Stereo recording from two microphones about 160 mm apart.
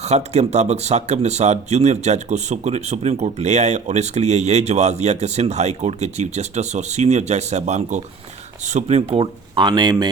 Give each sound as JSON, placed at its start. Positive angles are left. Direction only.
{"t": 0.0, "sound": "speech", "side_deg": -45}